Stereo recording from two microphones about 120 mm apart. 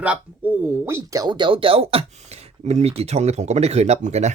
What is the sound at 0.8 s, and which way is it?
Speech, 25° right (ahead or behind).